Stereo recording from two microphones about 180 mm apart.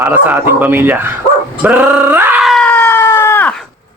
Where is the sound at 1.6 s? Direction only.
5° right (ahead or behind).